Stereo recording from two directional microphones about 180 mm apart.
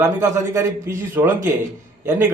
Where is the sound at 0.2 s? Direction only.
15° right (ahead or behind).